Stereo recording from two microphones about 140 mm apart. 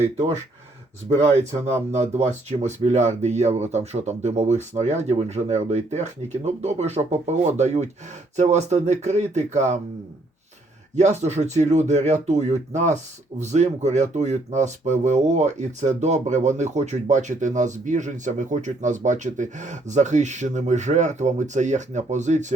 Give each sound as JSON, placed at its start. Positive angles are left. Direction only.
{"t": 0.0, "sound": "speech", "side_deg": -50}
{"t": 10.9, "sound": "speech", "side_deg": -55}